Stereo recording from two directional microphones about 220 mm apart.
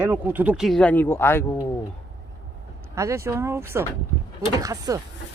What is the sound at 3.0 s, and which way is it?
Speech, 15° right (ahead or behind).